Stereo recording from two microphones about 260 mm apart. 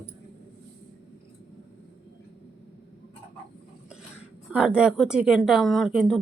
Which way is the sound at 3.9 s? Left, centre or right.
Centre.